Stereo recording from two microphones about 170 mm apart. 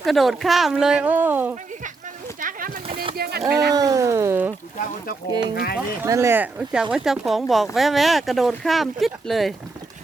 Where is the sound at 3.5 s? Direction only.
70° right (ahead or behind).